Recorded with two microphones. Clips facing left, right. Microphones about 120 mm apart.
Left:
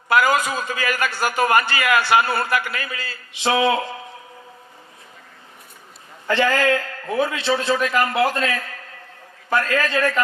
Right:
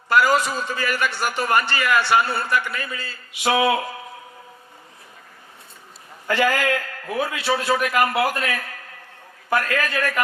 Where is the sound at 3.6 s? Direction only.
25° left (ahead or behind).